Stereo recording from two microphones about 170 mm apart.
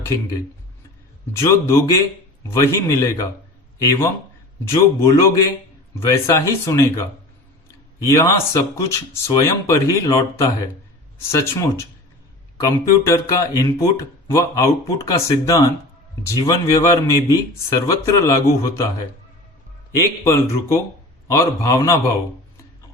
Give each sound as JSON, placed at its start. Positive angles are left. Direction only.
{"t": 1.4, "sound": "a man's voice", "side_deg": 15}
{"t": 20.2, "sound": "a man's voice", "side_deg": 15}